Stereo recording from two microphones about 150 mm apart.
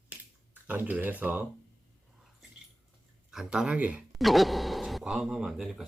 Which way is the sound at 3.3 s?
5° right (ahead or behind).